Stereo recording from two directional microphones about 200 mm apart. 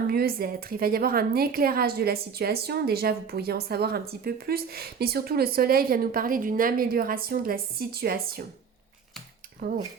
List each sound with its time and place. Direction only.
0.1 s speech: 50° right (ahead or behind)
9.6 s speech: 50° right (ahead or behind)